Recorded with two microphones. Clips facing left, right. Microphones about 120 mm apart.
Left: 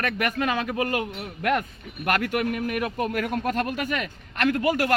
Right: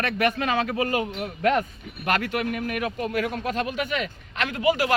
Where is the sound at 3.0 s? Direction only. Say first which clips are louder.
Left 1 dB; 50° left (ahead or behind).